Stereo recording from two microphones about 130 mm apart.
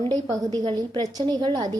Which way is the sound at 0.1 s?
30° right (ahead or behind).